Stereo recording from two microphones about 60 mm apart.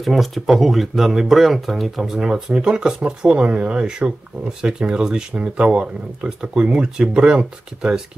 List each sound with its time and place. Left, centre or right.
0.0 s speech: centre